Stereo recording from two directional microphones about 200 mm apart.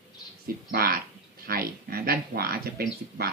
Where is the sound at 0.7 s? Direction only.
50° right (ahead or behind).